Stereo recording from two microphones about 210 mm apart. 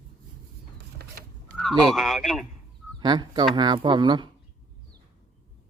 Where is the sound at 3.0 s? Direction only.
20° right (ahead or behind).